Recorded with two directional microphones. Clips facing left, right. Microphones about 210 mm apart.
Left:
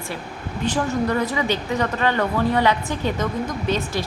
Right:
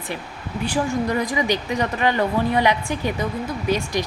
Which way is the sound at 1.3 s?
15° right (ahead or behind).